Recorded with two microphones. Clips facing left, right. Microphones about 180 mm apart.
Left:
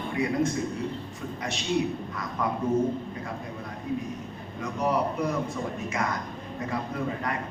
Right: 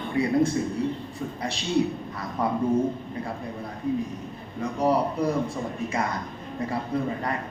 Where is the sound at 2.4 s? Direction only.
30° right (ahead or behind).